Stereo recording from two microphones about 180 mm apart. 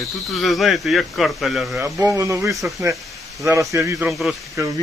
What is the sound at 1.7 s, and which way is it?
Speech, 20° right (ahead or behind).